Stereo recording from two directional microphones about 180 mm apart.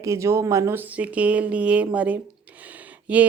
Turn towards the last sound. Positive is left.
turn(degrees=-10)  # may be behind; listen again after turning